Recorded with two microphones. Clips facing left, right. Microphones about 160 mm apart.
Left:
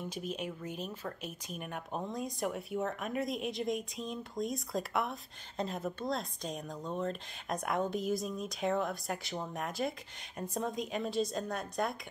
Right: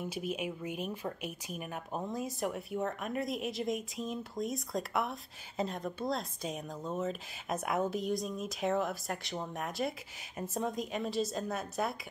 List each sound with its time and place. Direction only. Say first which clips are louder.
0.0 s speech: right 2 dB; 10° right (ahead or behind)